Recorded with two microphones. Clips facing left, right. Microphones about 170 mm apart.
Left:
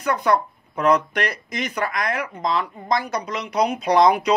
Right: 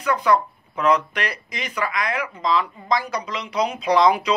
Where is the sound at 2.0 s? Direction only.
45° left (ahead or behind).